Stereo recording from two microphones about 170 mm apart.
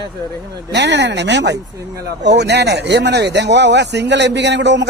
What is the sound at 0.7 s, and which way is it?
Speech, 90° right.